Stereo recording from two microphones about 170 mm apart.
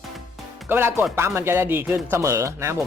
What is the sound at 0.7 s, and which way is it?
Speech, 15° right (ahead or behind).